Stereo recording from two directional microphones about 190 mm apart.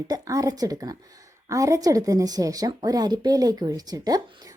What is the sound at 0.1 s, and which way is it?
A woman's voice, 20° right (ahead or behind).